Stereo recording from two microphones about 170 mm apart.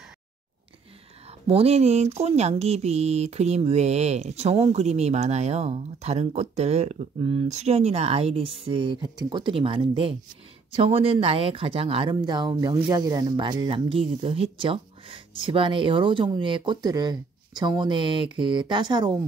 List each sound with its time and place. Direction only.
1.5 s speech: 35° right (ahead or behind)